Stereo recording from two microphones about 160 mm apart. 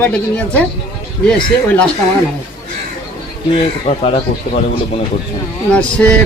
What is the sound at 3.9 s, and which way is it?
Speech, 40° left (ahead or behind).